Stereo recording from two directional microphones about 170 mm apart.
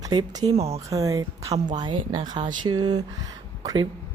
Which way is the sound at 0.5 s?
40° right (ahead or behind).